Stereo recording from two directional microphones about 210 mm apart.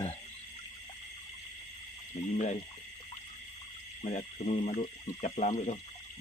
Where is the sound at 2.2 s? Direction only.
35° left (ahead or behind).